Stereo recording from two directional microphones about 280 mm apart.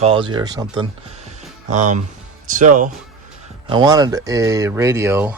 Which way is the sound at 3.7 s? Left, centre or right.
Centre.